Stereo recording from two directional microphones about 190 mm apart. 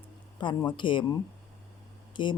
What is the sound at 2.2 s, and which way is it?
Speech, 25° left (ahead or behind).